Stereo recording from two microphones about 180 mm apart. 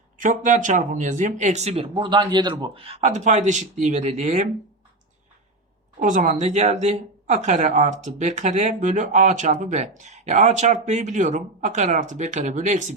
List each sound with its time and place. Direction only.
0.2 s speech: 45° right (ahead or behind)
6.0 s speech: 45° right (ahead or behind)